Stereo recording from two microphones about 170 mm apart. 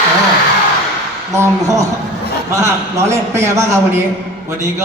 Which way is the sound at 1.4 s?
20° right (ahead or behind).